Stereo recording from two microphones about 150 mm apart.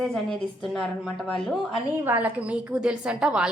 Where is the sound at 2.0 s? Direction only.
10° right (ahead or behind).